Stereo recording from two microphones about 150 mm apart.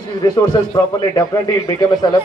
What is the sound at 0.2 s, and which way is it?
A man's voice, 25° left (ahead or behind).